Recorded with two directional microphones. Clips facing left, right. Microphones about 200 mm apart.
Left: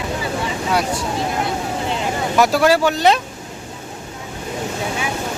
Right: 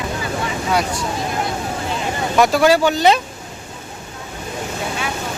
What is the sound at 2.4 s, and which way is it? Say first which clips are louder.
Speech: right 1 dB; centre (ahead or behind).